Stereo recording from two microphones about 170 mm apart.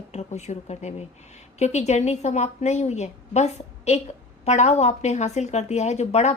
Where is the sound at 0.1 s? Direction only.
40° left (ahead or behind).